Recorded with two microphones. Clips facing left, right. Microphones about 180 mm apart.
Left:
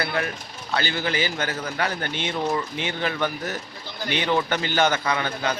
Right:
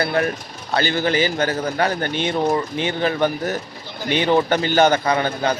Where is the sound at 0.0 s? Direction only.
40° right (ahead or behind).